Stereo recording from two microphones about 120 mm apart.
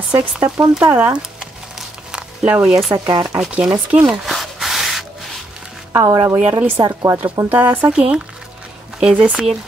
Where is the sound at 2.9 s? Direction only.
35° right (ahead or behind).